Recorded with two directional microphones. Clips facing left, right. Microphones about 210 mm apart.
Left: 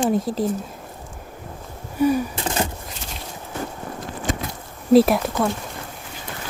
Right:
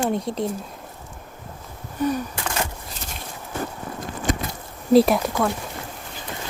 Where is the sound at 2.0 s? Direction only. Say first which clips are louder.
Left 5 dB; 10° left (ahead or behind).